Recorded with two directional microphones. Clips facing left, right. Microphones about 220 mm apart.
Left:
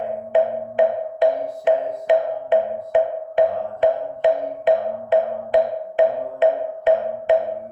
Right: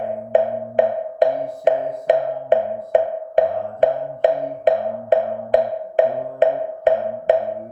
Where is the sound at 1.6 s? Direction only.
40° right (ahead or behind).